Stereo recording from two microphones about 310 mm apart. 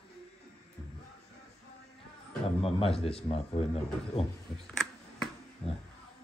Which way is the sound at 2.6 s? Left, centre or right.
Centre.